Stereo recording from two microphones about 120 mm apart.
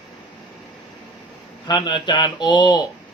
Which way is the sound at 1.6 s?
40° left (ahead or behind).